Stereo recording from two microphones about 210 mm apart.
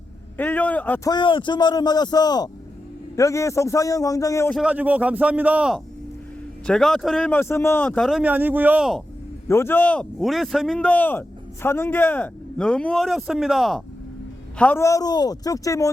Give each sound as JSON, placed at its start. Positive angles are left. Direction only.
{"t": 0.3, "sound": "a man's voice", "side_deg": 10}
{"t": 4.5, "sound": "speech", "side_deg": -5}
{"t": 9.5, "sound": "speech", "side_deg": 10}
{"t": 14.6, "sound": "a man's voice", "side_deg": 10}